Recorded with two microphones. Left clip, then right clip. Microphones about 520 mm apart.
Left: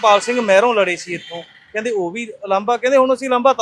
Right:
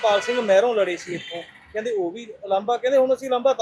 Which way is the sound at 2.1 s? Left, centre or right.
Left.